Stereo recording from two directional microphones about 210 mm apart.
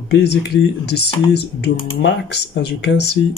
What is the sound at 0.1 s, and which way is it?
Speech, 50° left (ahead or behind).